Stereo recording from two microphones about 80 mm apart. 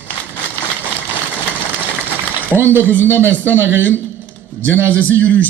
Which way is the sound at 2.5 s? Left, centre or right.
Right.